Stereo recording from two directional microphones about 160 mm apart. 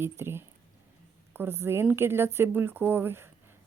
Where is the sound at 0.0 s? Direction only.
15° right (ahead or behind).